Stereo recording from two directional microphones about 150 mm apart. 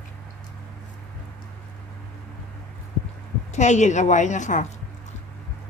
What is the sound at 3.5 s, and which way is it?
A woman's voice, 55° left (ahead or behind).